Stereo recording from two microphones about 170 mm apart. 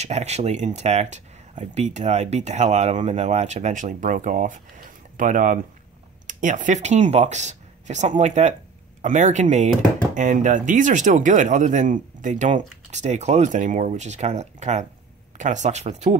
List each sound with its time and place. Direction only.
0.0 s speech: 40° right (ahead or behind)